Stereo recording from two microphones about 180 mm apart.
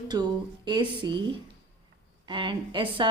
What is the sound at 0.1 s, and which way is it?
A woman's voice, 25° right (ahead or behind).